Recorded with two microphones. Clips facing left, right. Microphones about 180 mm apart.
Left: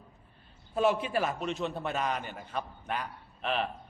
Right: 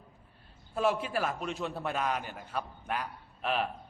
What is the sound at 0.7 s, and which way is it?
A man's voice, 5° right (ahead or behind).